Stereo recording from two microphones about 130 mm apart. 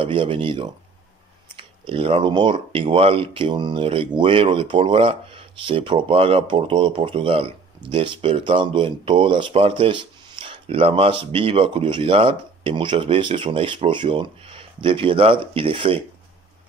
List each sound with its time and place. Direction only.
0.0 s speech: 40° right (ahead or behind)
1.9 s speech: 45° right (ahead or behind)